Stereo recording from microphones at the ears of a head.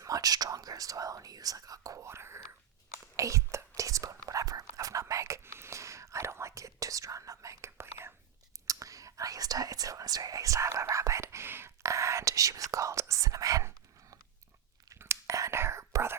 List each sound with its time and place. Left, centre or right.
0.0 s speech: right
3.2 s whispering: right
8.6 s speech: right
14.8 s whispering: right